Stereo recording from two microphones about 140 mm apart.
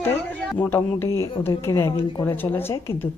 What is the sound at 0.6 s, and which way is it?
Speech, 15° left (ahead or behind).